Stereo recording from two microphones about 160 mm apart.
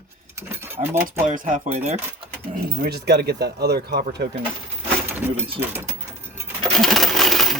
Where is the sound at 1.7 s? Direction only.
40° right (ahead or behind).